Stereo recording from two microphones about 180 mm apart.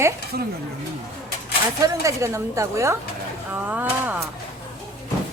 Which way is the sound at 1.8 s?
15° right (ahead or behind).